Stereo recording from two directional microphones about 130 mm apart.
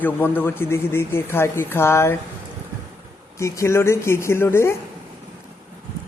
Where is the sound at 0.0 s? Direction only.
15° left (ahead or behind).